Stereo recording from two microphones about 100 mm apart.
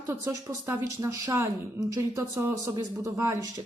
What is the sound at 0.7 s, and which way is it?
A woman's voice, 30° right (ahead or behind).